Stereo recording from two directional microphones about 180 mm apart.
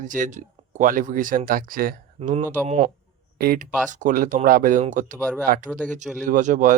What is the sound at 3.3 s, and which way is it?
Speech, 55° right (ahead or behind).